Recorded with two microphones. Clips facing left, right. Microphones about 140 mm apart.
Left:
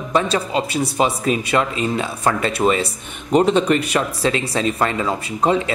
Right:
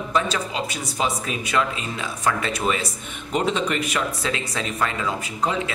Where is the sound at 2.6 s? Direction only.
35° left (ahead or behind).